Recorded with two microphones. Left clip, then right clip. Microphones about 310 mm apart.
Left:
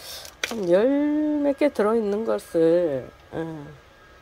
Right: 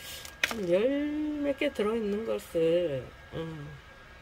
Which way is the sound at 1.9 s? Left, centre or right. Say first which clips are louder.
Left 8 dB; centre.